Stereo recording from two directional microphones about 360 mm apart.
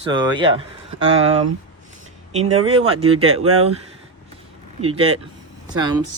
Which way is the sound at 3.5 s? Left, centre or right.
Right.